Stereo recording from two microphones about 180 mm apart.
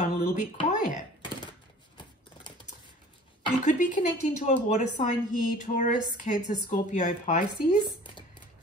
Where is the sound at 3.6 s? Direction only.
45° left (ahead or behind).